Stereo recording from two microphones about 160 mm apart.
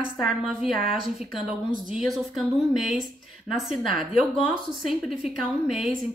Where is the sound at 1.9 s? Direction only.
Centre (ahead or behind).